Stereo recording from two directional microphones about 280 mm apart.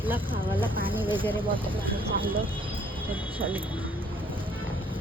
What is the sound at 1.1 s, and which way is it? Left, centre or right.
Speech, centre.